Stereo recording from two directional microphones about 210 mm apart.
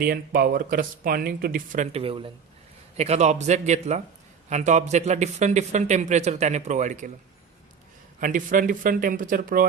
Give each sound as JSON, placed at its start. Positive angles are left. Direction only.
{"t": 0.0, "sound": "a man's voice", "side_deg": -45}
{"t": 8.2, "sound": "a man's voice", "side_deg": -40}